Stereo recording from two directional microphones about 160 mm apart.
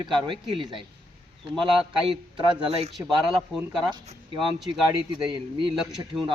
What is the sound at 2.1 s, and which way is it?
Speech, 30° right (ahead or behind).